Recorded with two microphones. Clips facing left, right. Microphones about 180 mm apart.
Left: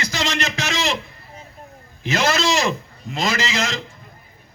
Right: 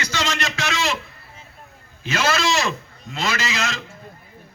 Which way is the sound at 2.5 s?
15° left (ahead or behind).